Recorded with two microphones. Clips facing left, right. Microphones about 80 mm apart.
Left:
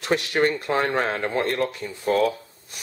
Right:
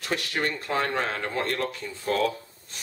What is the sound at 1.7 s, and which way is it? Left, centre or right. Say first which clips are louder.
Speech: left 5 dB; centre.